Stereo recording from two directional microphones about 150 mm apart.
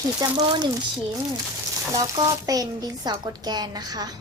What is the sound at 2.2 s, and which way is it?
Speech, 25° right (ahead or behind).